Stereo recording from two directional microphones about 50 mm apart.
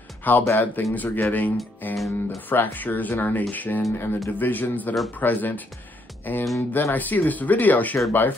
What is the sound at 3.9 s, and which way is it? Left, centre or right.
Speech, left.